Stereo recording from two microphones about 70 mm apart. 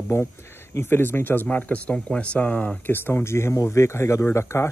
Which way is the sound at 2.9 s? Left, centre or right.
Left.